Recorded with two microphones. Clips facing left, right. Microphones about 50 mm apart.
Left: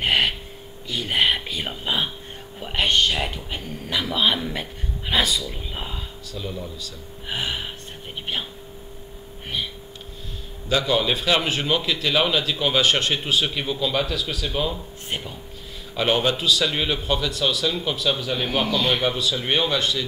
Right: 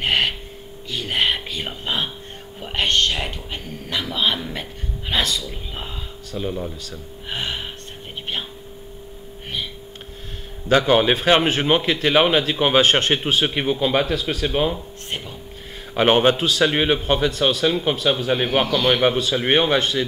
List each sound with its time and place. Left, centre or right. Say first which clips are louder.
0.0 s snort: even; centre
0.8 s speech: even; centre
6.2 s a man's voice: right 7 dB; right
7.2 s gasp: even; centre
10.7 s a man's voice: right 5 dB; right
15.0 s speech: even; centre
15.9 s a man's voice: right 5 dB; right